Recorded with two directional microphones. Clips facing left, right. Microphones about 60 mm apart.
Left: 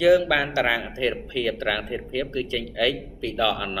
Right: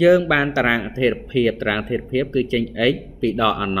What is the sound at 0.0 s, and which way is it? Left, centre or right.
Speech, right.